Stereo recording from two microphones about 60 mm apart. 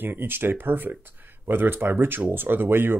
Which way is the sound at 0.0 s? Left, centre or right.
Right.